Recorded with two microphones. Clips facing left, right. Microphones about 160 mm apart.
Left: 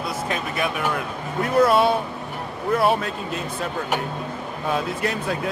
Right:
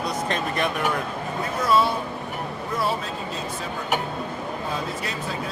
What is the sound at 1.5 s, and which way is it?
Speech, 60° left (ahead or behind).